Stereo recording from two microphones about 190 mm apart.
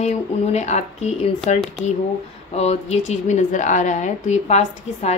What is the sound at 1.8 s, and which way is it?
Speech, 5° left (ahead or behind).